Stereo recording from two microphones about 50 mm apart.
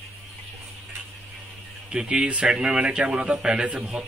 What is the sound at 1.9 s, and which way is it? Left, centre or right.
A man's voice, centre.